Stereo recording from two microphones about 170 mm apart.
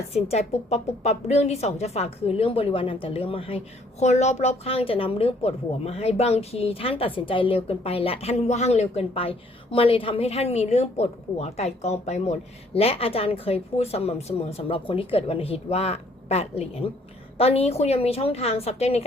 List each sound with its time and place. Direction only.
0.1 s speech: 40° left (ahead or behind)